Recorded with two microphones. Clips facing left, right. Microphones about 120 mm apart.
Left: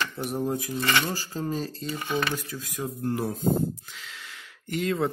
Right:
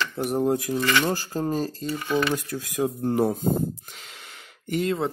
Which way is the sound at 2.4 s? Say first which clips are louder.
Right 5 dB; 70° right (ahead or behind).